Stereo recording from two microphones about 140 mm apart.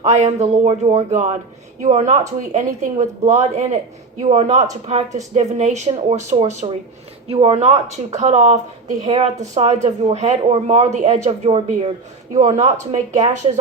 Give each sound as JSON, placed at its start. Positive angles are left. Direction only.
{"t": 0.0, "sound": "speech", "side_deg": -50}
{"t": 9.0, "sound": "a woman's voice", "side_deg": -40}
{"t": 9.4, "sound": "speech", "side_deg": -50}
{"t": 12.3, "sound": "speech", "side_deg": -50}